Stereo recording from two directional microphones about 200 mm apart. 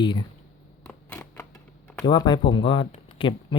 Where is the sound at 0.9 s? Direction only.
10° left (ahead or behind).